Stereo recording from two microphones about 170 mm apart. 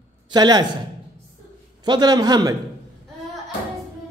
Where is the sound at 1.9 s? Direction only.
25° right (ahead or behind).